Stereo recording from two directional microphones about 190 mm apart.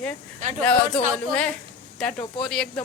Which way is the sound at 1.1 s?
5° left (ahead or behind).